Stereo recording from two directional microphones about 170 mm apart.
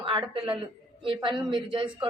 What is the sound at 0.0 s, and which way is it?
A woman's voice, 30° right (ahead or behind).